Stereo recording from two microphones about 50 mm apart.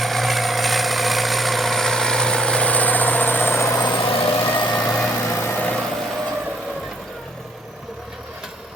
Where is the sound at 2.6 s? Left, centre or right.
Left.